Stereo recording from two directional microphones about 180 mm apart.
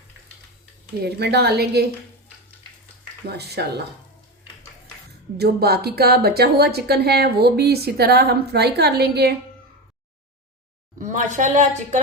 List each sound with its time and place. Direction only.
1.0 s speech: 65° right (ahead or behind)
3.2 s speech: 65° right (ahead or behind)
5.4 s speech: 60° right (ahead or behind)
10.9 s a woman's voice: 45° right (ahead or behind)